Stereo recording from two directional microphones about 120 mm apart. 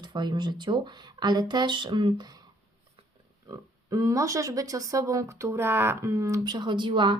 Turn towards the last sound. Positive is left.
turn(degrees=-40)  # may be behind; listen again after turning